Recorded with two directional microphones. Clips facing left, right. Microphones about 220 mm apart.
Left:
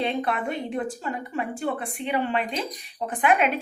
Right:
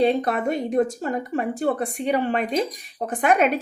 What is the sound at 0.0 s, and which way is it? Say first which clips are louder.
Speech: right 6 dB; 40° right (ahead or behind).